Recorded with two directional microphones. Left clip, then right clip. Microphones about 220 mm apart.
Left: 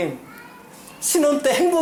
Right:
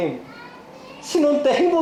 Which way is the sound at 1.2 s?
25° left (ahead or behind).